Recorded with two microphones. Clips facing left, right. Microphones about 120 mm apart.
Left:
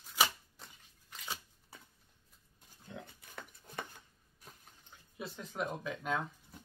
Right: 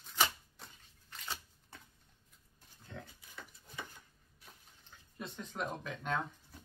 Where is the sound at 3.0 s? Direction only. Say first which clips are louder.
Left 2 dB; 55° left (ahead or behind).